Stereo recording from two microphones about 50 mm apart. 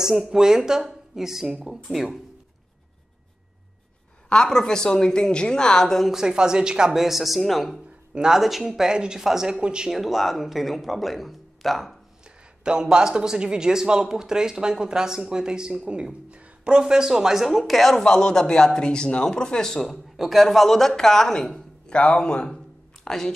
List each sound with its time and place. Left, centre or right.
0.0 s a man's voice: centre
4.3 s speech: centre
6.0 s a man's voice: centre
6.9 s speech: centre
8.1 s speech: centre
8.4 s a man's voice: centre
9.8 s speech: centre
12.6 s a man's voice: centre